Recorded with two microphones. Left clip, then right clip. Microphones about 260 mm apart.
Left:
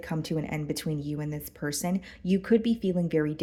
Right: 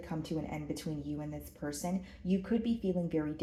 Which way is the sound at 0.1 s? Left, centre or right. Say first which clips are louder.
Left 6 dB; left.